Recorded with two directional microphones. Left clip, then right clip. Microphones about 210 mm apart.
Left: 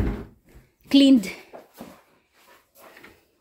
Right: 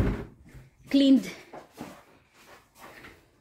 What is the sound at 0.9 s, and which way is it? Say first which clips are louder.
Speech: left 5 dB; 25° left (ahead or behind).